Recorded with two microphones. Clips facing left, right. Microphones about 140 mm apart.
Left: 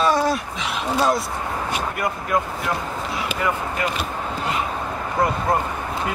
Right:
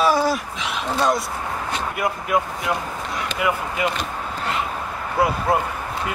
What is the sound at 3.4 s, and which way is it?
Speech, 10° right (ahead or behind).